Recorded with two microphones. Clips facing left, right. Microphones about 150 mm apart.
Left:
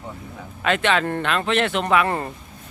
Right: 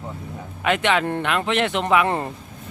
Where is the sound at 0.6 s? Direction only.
15° right (ahead or behind).